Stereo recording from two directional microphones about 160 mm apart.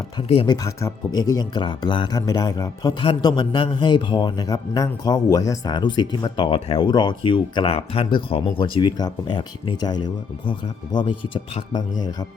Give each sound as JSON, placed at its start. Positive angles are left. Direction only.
{"t": 0.2, "sound": "speech", "side_deg": 35}
{"t": 0.5, "sound": "speech", "side_deg": 20}